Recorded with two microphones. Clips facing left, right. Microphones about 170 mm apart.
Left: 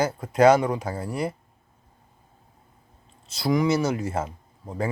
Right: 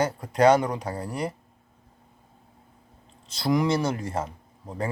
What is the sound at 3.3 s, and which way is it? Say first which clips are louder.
Speech: left 1 dB; centre (ahead or behind).